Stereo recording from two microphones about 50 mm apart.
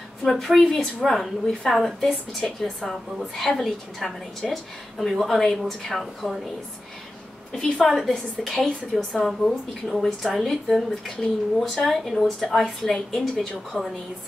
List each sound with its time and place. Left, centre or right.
0.2 s a woman's voice: centre
7.5 s a woman's voice: centre
7.8 s a woman's voice: centre